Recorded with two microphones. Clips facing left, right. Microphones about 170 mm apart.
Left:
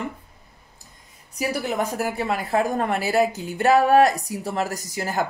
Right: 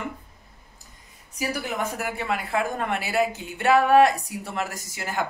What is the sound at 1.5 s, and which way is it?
A woman's voice, 35° left (ahead or behind).